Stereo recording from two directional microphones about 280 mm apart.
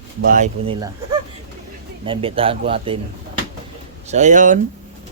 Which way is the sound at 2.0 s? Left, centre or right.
Centre.